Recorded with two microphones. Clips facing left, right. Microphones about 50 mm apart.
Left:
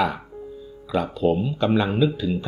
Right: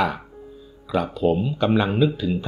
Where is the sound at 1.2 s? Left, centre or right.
Centre.